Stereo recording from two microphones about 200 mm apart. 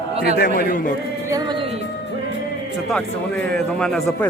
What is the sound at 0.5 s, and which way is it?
Speech, 40° left (ahead or behind).